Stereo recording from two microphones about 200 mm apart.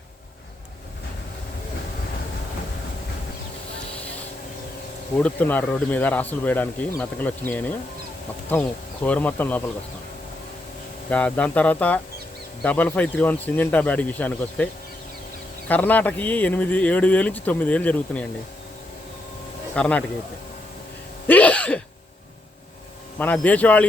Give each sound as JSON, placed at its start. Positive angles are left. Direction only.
{"t": 5.2, "sound": "speech", "side_deg": 10}
{"t": 9.0, "sound": "speech", "side_deg": 10}
{"t": 11.1, "sound": "speech", "side_deg": 5}
{"t": 15.7, "sound": "speech", "side_deg": 10}
{"t": 19.7, "sound": "speech", "side_deg": 5}
{"t": 21.2, "sound": "sneeze", "side_deg": 5}
{"t": 23.1, "sound": "speech", "side_deg": 10}